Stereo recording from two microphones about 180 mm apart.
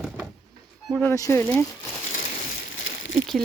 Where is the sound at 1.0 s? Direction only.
15° left (ahead or behind).